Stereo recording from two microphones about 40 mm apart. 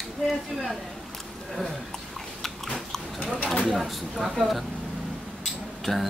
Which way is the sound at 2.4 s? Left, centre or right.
Centre.